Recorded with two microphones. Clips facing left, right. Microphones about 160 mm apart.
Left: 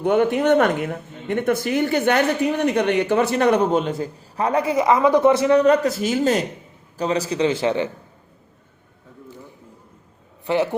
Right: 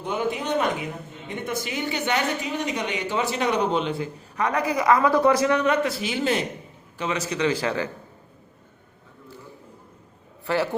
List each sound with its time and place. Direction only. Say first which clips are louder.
0.0 s speech: left 9 dB; 65° left (ahead or behind); by 7.9 s 25° left (ahead or behind)
10.4 s speech: left 4 dB; 20° left (ahead or behind)